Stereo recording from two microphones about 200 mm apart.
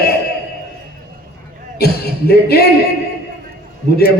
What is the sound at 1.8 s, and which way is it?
Speech, 50° left (ahead or behind).